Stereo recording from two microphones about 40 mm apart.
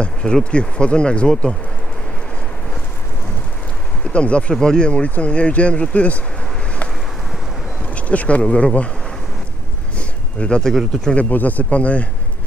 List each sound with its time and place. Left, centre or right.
0.0 s speech: left
4.1 s speech: left
7.9 s speech: left
9.9 s a sound: left
11.1 s speech: left